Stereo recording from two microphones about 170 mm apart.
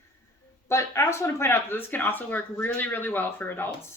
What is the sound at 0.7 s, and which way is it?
Speech, 15° left (ahead or behind).